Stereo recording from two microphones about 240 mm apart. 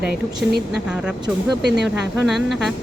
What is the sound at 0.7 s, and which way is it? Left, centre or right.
Speech, centre.